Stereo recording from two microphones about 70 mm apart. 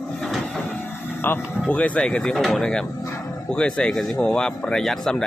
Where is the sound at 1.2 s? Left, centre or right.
Left.